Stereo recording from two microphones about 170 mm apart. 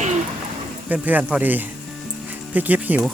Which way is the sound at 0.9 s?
10° right (ahead or behind).